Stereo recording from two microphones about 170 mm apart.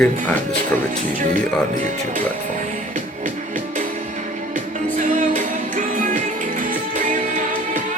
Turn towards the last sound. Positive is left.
turn(degrees=-50)  # may be behind; listen again after turning